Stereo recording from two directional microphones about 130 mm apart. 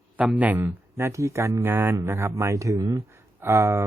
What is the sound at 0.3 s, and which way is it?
Speech, 10° right (ahead or behind).